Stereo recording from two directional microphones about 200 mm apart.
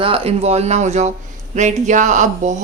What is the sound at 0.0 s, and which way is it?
A woman's voice, 25° right (ahead or behind).